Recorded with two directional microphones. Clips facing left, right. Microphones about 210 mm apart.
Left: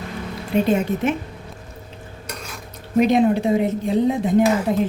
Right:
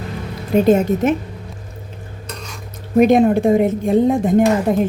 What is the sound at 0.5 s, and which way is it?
Speech, 40° right (ahead or behind).